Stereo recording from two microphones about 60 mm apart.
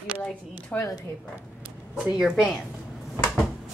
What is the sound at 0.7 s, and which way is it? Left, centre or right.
Speech, left.